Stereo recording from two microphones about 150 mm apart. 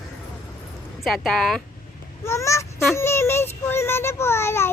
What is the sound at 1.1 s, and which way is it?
Speech, centre (ahead or behind).